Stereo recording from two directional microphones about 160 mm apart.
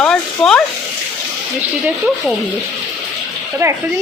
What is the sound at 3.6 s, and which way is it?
Speech, 20° right (ahead or behind).